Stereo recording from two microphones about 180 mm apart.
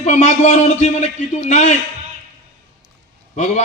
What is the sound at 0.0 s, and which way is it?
A man's voice, 40° left (ahead or behind).